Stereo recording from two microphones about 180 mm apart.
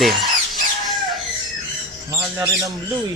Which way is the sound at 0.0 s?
Centre (ahead or behind).